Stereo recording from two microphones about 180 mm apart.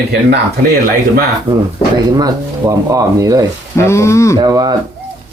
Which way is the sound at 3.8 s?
15° left (ahead or behind).